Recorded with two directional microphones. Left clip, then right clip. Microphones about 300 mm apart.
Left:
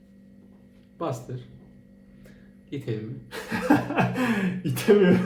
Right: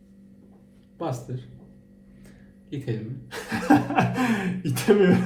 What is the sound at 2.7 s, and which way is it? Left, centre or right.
Speech, centre.